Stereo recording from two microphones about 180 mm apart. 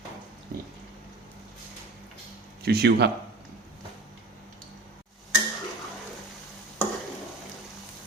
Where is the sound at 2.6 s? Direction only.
65° right (ahead or behind).